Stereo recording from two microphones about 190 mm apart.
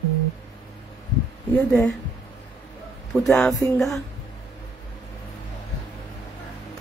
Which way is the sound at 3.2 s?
Centre (ahead or behind).